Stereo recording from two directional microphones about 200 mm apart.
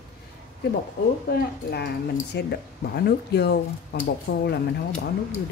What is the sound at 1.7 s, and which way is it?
Speech, 55° left (ahead or behind).